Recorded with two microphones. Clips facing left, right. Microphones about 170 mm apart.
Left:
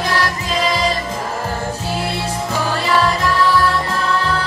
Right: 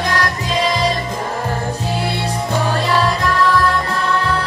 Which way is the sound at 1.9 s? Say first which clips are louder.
Right 1 dB; centre (ahead or behind).